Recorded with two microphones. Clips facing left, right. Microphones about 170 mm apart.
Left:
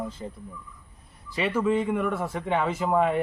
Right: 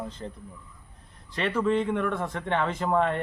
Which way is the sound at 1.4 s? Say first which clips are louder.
Left 1 dB; 10° left (ahead or behind).